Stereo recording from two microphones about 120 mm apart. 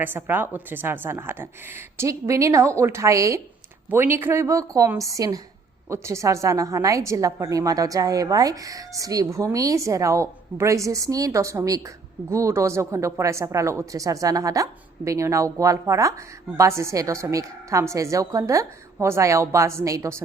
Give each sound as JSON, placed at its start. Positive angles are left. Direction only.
{"t": 0.0, "sound": "a woman's voice", "side_deg": -15}